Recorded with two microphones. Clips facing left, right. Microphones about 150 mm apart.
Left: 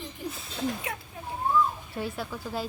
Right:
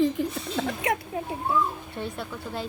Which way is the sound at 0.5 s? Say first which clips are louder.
Right 5 dB; 75° right (ahead or behind).